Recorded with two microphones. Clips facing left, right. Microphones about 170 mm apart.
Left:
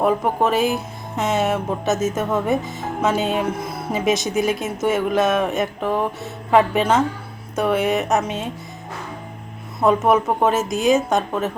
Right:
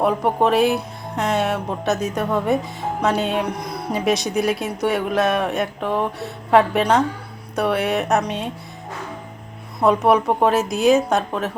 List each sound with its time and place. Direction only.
0.0 s speech: centre (ahead or behind)
9.8 s speech: centre (ahead or behind)